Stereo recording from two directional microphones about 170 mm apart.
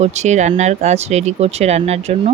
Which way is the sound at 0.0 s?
40° right (ahead or behind).